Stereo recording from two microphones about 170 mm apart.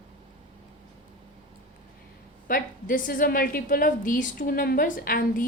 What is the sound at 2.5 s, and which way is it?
A woman's voice, 55° left (ahead or behind).